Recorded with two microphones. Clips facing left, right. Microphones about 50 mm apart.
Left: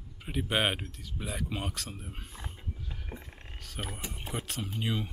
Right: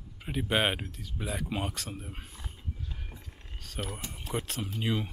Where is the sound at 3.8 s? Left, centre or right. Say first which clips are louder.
Right 1 dB; centre.